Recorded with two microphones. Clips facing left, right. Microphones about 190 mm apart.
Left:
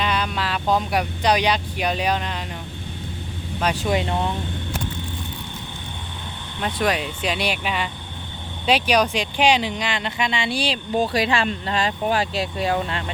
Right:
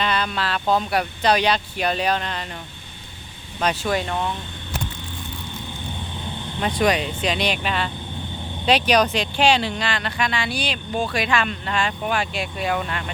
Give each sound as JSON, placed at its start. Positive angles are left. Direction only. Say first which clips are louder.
{"t": 0.0, "sound": "speech", "louder": "even", "side_deg": 10}
{"t": 3.8, "sound": "speech", "louder": "left 1 dB", "side_deg": 20}
{"t": 6.7, "sound": "speech", "louder": "right 2 dB", "side_deg": 5}